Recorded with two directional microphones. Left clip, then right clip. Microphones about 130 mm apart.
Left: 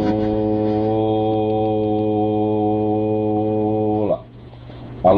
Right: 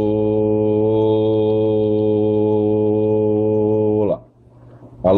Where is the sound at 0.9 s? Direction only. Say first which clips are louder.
Right 3 dB; 50° right (ahead or behind).